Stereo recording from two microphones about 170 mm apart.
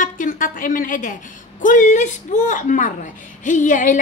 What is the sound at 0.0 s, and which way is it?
A woman's voice, 50° left (ahead or behind).